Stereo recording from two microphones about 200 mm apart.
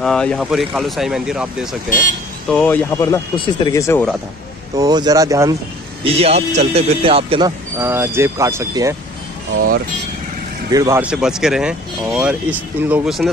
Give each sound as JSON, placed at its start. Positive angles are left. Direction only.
{"t": 0.0, "sound": "speech", "side_deg": 5}
{"t": 1.9, "sound": "speech", "side_deg": 40}
{"t": 2.5, "sound": "speech", "side_deg": 5}
{"t": 4.7, "sound": "speech", "side_deg": -20}
{"t": 6.0, "sound": "speech", "side_deg": -30}
{"t": 7.8, "sound": "speech", "side_deg": -10}
{"t": 10.7, "sound": "speech", "side_deg": -15}